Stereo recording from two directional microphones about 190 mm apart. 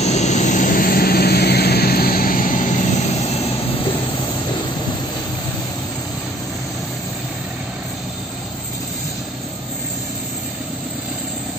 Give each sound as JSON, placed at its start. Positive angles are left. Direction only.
{"t": 0.0, "sound": "vehicle", "side_deg": 35}